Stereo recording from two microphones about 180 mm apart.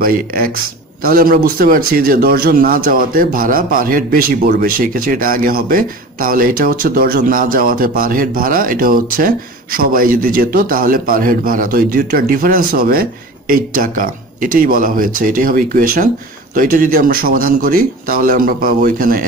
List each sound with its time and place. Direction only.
0.0 s a man's voice: 55° right (ahead or behind)